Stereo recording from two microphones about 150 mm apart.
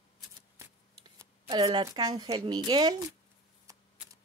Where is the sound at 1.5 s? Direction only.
35° right (ahead or behind).